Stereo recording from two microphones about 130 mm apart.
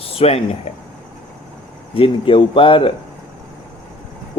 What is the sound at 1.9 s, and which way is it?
Speech, 45° left (ahead or behind).